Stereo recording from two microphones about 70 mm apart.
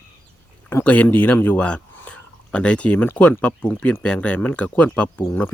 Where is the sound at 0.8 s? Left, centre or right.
Left.